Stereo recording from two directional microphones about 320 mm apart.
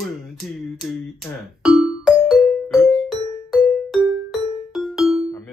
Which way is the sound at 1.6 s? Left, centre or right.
Centre.